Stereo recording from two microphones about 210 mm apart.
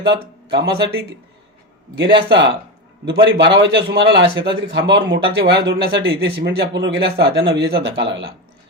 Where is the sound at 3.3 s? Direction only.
55° right (ahead or behind).